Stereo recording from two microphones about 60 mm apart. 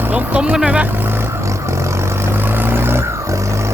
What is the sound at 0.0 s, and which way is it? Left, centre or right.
Speech, right.